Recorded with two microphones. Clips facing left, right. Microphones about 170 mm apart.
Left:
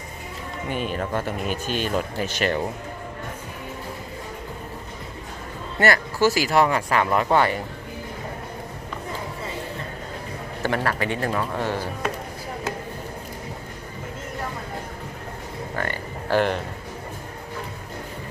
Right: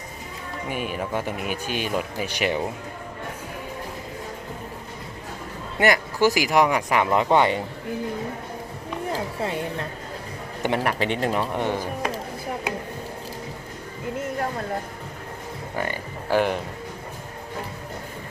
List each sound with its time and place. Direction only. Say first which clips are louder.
0.7 s speech: left 1 dB; 10° right (ahead or behind)
5.8 s speech: even; 15° right (ahead or behind)
9.1 s music: right 6 dB; 65° right (ahead or behind)
10.6 s speech: right 1 dB; 20° right (ahead or behind)
15.7 s speech: right 1 dB; 15° right (ahead or behind)